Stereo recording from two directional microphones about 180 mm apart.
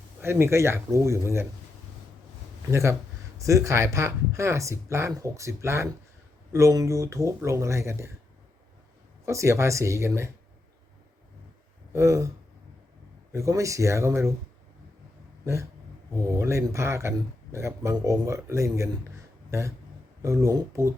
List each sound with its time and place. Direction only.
0.2 s speech: 15° right (ahead or behind)
2.6 s speech: 15° right (ahead or behind)
9.2 s speech: 15° right (ahead or behind)
11.9 s speech: 15° right (ahead or behind)
13.3 s speech: 15° right (ahead or behind)
16.1 s speech: 15° right (ahead or behind)